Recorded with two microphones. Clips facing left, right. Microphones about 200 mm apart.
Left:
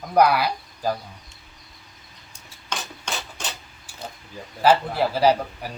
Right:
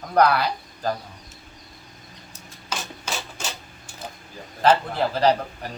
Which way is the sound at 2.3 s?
5° right (ahead or behind).